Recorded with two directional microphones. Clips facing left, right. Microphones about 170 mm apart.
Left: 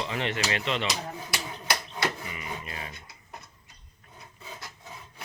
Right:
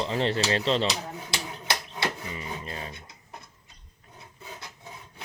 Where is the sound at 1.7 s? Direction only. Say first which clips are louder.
Left 1 dB; 25° right (ahead or behind).